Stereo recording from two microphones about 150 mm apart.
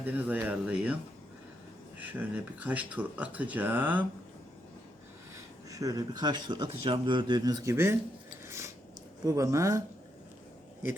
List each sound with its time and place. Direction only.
0.0 s speech: 10° right (ahead or behind)
2.0 s speech: 10° right (ahead or behind)
5.7 s a man's voice: 25° right (ahead or behind)
8.4 s a sound: 20° right (ahead or behind)
9.2 s a man's voice: 20° right (ahead or behind)